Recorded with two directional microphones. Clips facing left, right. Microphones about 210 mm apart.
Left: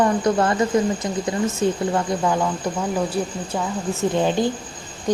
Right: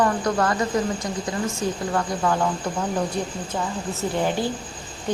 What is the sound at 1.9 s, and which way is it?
Speech, 15° left (ahead or behind).